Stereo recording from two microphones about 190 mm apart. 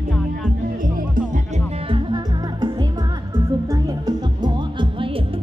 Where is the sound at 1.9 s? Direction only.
25° right (ahead or behind).